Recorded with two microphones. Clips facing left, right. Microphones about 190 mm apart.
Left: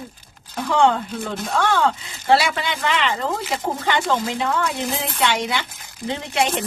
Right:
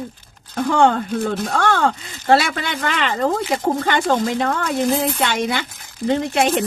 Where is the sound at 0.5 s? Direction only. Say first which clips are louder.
Right 2 dB; 50° right (ahead or behind).